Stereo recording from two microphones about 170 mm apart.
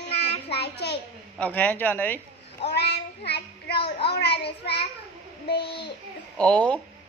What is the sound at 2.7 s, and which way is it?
Child singing, 85° left.